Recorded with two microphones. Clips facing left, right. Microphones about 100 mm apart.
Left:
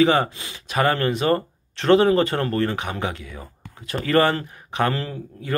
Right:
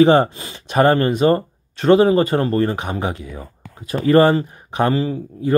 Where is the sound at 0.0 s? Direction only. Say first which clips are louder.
Right 6 dB; 30° right (ahead or behind).